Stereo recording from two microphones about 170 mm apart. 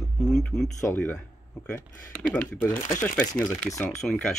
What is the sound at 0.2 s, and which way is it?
Speech, centre (ahead or behind).